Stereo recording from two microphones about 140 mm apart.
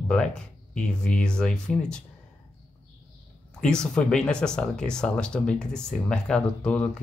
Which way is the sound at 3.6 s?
5° left (ahead or behind).